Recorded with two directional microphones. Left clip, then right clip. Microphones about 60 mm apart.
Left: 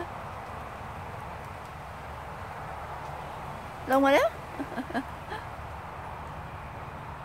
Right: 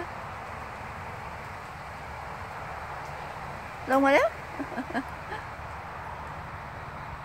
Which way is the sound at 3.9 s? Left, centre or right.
Right.